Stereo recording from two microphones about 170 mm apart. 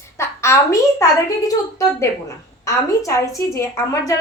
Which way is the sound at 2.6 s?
20° left (ahead or behind).